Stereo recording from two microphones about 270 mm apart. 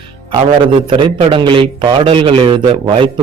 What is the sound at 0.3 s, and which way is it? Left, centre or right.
A man's voice, centre.